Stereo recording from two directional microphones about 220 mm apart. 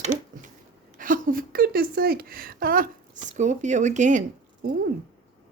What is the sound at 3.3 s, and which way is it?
Speech, 35° right (ahead or behind).